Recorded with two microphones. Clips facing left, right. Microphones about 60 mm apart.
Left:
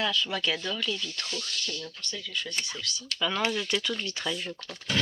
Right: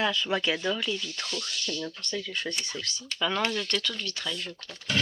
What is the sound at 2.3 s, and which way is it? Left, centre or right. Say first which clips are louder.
Speech: right 2 dB; right.